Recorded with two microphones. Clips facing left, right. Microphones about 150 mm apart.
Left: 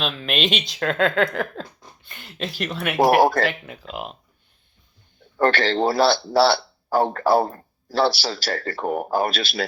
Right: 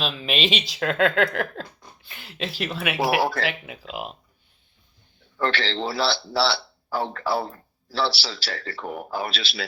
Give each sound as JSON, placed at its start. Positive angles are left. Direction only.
{"t": 0.0, "sound": "speech", "side_deg": 0}
{"t": 3.0, "sound": "speech", "side_deg": 45}
{"t": 3.9, "sound": "speech", "side_deg": 0}
{"t": 5.4, "sound": "speech", "side_deg": 50}